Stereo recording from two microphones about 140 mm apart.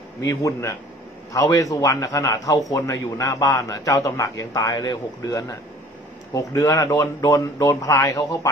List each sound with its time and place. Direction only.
0.2 s a man's voice: 25° left (ahead or behind)